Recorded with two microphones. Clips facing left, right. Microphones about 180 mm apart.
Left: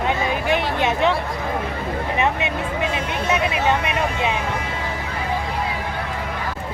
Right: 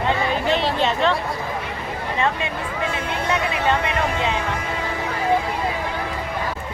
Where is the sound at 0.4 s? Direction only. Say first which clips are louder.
Even; 15° left (ahead or behind).